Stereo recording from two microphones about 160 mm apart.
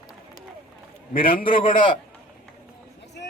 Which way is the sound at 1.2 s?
65° left (ahead or behind).